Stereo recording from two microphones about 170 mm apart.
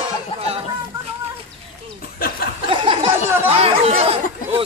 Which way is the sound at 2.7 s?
30° right (ahead or behind).